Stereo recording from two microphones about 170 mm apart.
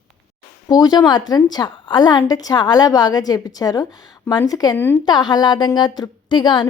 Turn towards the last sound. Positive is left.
turn(degrees=25)  # may be behind; listen again after turning